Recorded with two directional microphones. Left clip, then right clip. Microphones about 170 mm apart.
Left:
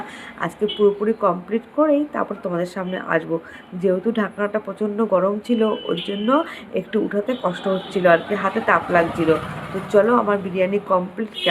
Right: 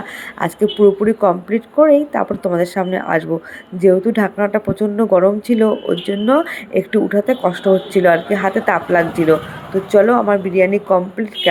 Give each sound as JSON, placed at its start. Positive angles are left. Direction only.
{"t": 0.3, "sound": "speech", "side_deg": -35}